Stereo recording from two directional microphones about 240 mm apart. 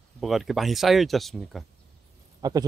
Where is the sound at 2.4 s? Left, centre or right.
Centre.